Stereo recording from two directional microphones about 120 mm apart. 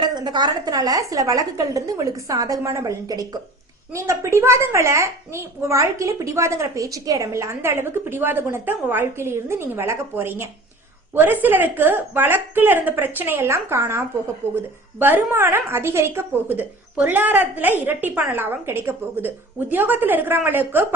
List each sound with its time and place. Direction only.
0.0 s a woman's voice: 35° right (ahead or behind); by 20.8 s 15° right (ahead or behind)